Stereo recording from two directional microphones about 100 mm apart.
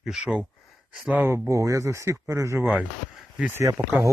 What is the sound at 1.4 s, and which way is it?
Speech, 30° right (ahead or behind).